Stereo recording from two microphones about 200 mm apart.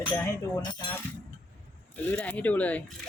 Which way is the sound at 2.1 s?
5° left (ahead or behind).